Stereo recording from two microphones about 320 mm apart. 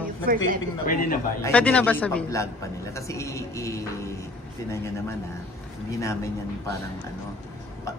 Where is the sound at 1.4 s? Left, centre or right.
Centre.